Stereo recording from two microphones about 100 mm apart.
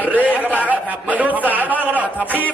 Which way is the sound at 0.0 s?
15° right (ahead or behind).